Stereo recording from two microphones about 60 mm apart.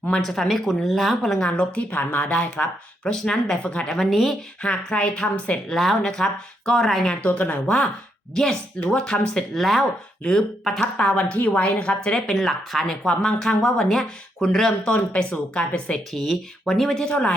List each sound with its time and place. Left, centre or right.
0.2 s speech: centre
1.5 s speech: left
3.1 s speech: centre
3.6 s speech: left
3.8 s speech: centre
4.6 s speech: centre
5.7 s speech: centre
7.3 s speech: left
8.4 s speech: centre
9.6 s speech: centre
10.9 s speech: centre
12.4 s speech: centre
16.1 s speech: centre
17.0 s speech: centre